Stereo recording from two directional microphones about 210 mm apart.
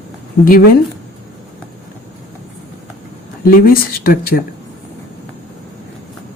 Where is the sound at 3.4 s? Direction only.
45° left (ahead or behind).